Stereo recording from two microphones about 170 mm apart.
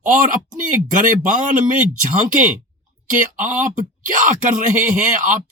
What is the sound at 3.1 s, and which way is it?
Speech, 50° right (ahead or behind).